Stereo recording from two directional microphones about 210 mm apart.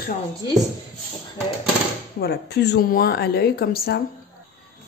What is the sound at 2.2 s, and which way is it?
A woman's voice, 50° left (ahead or behind).